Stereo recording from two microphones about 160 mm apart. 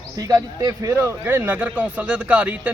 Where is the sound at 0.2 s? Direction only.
20° right (ahead or behind).